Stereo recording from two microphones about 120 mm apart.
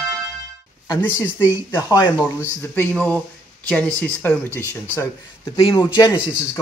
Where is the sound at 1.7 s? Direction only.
30° left (ahead or behind).